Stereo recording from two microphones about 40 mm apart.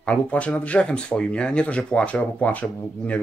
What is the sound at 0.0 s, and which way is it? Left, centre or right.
Speech, left.